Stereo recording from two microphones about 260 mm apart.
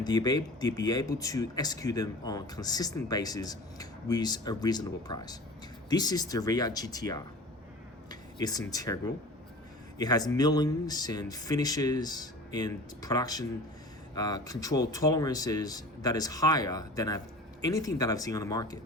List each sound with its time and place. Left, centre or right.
0.0 s speech: centre
10.0 s speech: centre